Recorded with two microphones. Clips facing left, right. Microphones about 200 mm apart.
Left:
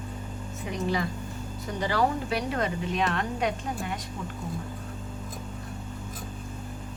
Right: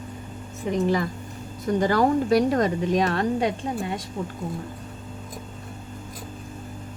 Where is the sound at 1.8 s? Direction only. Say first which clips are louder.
Right 5 dB; 45° right (ahead or behind); by 4.0 s 30° right (ahead or behind).